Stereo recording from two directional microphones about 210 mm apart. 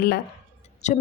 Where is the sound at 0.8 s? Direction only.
35° left (ahead or behind).